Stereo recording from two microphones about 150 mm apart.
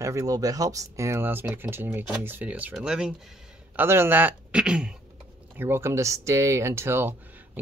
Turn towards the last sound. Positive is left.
turn(degrees=-15)  # may be behind; listen again after turning